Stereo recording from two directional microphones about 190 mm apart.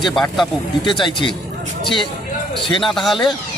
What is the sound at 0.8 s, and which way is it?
Speech, 25° left (ahead or behind).